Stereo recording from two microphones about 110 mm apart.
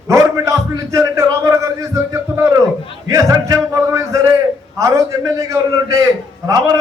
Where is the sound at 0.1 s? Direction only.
30° right (ahead or behind).